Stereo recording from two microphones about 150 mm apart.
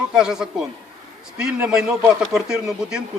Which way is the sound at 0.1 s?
5° right (ahead or behind).